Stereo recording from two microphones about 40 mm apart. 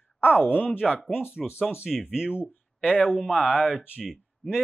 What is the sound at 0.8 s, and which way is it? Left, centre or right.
Speech, centre.